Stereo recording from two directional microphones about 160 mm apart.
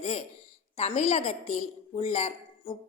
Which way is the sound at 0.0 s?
40° left (ahead or behind).